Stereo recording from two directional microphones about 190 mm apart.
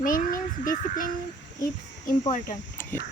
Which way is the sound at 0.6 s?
45° left (ahead or behind).